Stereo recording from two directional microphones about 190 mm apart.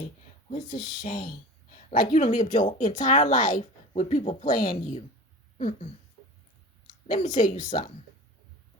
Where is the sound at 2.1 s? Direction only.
40° left (ahead or behind).